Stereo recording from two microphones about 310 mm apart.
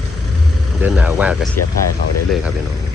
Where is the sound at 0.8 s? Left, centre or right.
Centre.